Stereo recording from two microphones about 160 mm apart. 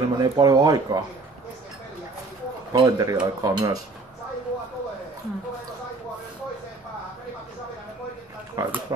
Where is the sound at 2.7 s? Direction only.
25° right (ahead or behind).